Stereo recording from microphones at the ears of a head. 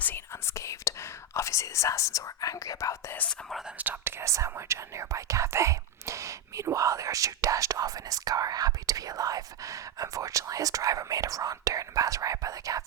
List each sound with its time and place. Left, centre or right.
0.0 s whispering: left
3.8 s whispering: right